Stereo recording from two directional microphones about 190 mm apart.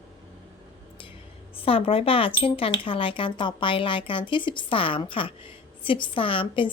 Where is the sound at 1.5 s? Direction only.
30° left (ahead or behind).